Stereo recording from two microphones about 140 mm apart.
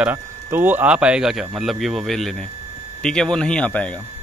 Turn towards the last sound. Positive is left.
turn(degrees=10)  # may be behind; listen again after turning